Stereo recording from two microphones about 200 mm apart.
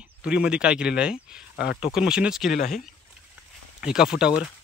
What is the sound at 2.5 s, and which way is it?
Speech, 40° left (ahead or behind).